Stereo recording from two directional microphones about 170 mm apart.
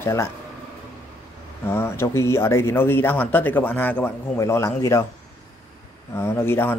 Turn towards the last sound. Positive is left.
turn(degrees=15)  # may be behind; listen again after turning